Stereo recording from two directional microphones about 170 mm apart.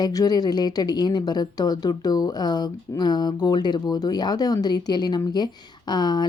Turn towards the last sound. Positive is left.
turn(degrees=25)  # may be behind; listen again after turning